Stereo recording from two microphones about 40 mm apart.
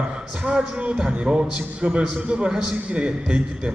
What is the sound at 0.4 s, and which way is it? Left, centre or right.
A man's voice, right.